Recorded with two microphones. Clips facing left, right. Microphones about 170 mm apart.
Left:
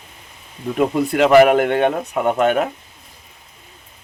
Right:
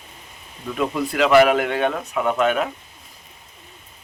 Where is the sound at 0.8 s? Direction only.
50° left (ahead or behind).